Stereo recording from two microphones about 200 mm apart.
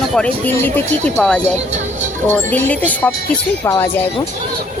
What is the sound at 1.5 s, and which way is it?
Speech, 35° right (ahead or behind).